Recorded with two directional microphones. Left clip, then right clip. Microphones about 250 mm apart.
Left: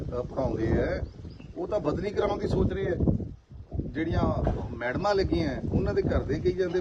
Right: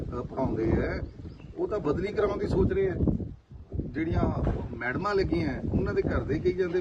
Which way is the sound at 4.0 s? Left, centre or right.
Centre.